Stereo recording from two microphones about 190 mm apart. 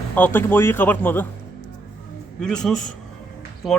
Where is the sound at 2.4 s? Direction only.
5° left (ahead or behind).